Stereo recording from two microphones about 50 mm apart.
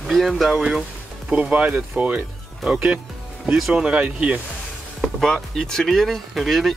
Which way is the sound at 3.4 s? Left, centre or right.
Centre.